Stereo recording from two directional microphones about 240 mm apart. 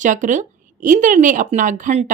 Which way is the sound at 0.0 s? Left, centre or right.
Right.